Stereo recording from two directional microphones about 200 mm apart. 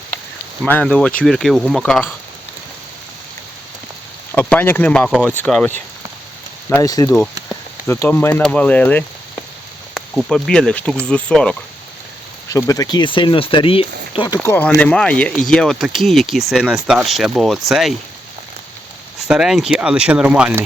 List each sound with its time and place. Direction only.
0.6 s speech: 5° left (ahead or behind)
4.3 s speech: 5° left (ahead or behind)
12.5 s speech: 15° left (ahead or behind)
14.4 s speech: 15° left (ahead or behind)
19.3 s speech: centre (ahead or behind)